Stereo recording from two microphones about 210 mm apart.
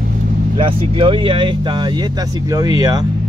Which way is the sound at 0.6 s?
25° right (ahead or behind).